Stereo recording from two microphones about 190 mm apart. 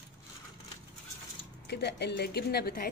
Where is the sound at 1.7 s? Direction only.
60° left (ahead or behind).